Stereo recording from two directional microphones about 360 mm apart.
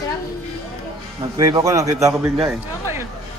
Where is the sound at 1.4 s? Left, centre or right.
Centre.